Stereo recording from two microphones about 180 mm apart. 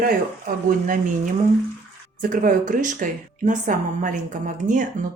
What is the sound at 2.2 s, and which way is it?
A woman's voice, 50° right (ahead or behind).